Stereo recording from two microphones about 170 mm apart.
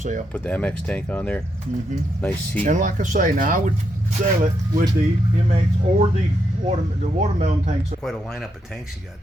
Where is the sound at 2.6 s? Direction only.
50° right (ahead or behind).